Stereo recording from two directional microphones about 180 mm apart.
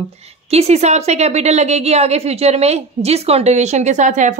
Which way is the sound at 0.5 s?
35° right (ahead or behind).